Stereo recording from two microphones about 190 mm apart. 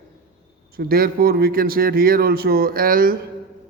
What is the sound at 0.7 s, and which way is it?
Speech, 50° right (ahead or behind).